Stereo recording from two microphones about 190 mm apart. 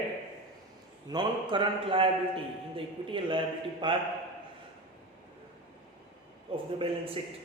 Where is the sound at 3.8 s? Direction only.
25° right (ahead or behind).